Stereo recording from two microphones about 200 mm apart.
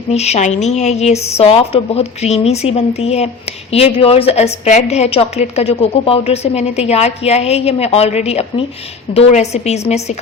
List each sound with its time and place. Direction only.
0.1 s a woman's voice: 30° left (ahead or behind)